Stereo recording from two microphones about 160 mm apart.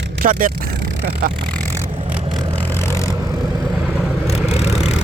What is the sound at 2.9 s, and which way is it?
Vehicle, 20° left (ahead or behind).